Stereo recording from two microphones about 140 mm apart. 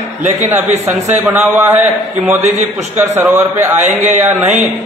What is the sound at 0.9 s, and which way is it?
Speech, 55° right (ahead or behind).